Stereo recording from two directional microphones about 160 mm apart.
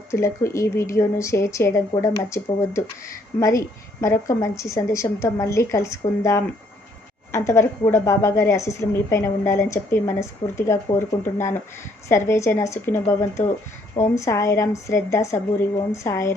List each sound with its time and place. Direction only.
0.1 s a woman's voice: 20° left (ahead or behind)